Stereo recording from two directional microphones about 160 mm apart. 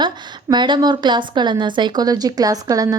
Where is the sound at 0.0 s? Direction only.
30° right (ahead or behind).